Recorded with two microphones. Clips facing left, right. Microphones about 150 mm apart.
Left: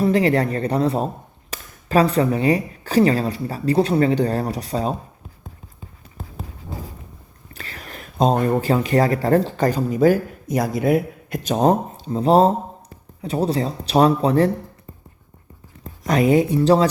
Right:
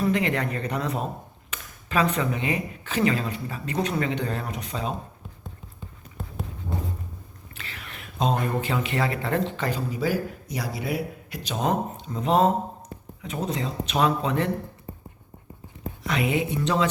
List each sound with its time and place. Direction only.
0.0 s speech: 35° left (ahead or behind)
6.1 s a sound: centre (ahead or behind)
7.5 s speech: 40° left (ahead or behind)
16.0 s speech: 40° left (ahead or behind)